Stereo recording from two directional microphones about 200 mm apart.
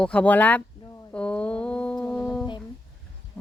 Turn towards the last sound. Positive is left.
turn(degrees=10)  # may be behind; listen again after turning